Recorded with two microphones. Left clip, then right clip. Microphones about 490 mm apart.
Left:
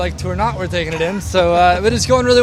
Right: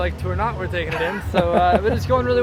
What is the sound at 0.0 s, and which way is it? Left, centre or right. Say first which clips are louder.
Speech: left 4 dB; left.